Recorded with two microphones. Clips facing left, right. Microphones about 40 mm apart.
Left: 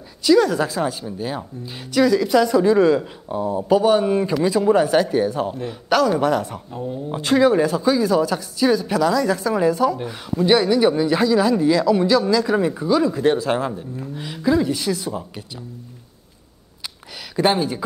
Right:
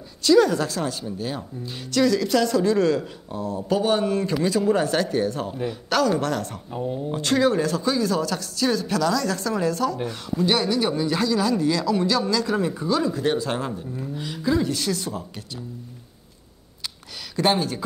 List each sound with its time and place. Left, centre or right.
0.2 s speech: centre
6.7 s speech: centre
7.1 s speech: centre
17.5 s speech: centre